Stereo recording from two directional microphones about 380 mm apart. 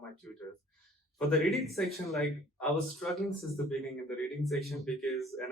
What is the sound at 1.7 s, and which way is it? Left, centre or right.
Speech, centre.